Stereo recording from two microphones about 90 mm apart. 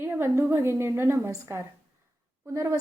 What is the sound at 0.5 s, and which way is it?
A woman's voice, 30° right (ahead or behind).